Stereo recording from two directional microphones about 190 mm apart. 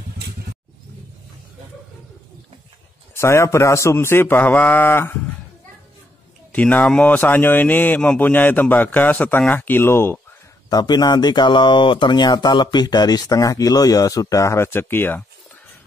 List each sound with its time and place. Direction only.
3.2 s speech: 15° left (ahead or behind)
6.5 s speech: 10° left (ahead or behind)